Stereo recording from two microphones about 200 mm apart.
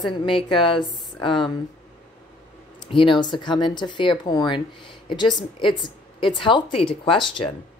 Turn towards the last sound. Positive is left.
turn(degrees=25)  # may be behind; listen again after turning